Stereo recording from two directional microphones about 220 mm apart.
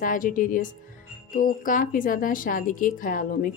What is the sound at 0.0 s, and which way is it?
Speech, 40° left (ahead or behind).